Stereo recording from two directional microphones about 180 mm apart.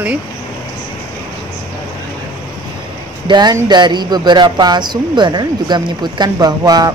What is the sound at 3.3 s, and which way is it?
Speech, 25° right (ahead or behind).